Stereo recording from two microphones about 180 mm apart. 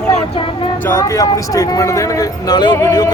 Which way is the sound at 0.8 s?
15° left (ahead or behind).